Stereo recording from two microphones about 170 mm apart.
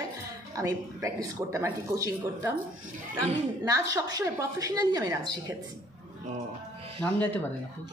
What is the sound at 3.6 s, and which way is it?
A woman's voice, 20° right (ahead or behind).